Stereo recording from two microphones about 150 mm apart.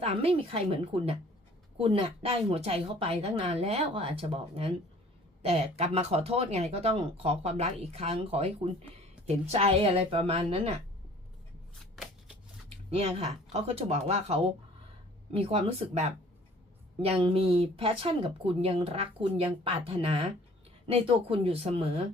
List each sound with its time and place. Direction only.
0.0 s speech: 40° right (ahead or behind)
12.9 s speech: 45° right (ahead or behind)